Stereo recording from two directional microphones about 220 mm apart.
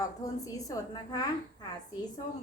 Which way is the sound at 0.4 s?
15° left (ahead or behind).